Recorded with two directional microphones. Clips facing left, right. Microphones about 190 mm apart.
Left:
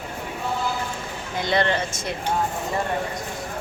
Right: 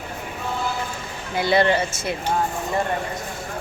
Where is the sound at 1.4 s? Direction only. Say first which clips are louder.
Right 4 dB; 10° right (ahead or behind).